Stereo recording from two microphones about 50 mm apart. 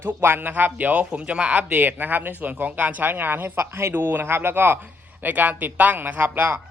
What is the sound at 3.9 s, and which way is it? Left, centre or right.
Speech, right.